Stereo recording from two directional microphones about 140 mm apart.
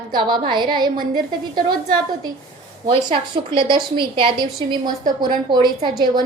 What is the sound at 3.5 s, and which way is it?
A woman's voice, 35° right (ahead or behind).